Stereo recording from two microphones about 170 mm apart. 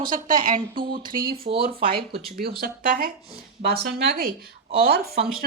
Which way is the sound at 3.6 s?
70° right (ahead or behind).